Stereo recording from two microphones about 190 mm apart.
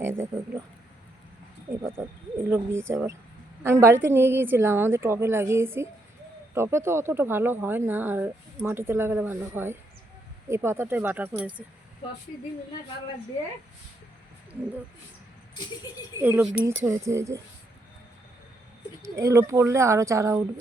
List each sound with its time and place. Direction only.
0.0 s speech: 10° right (ahead or behind)
1.7 s speech: 15° right (ahead or behind)
16.2 s speech: 10° right (ahead or behind)
19.0 s speech: 15° right (ahead or behind)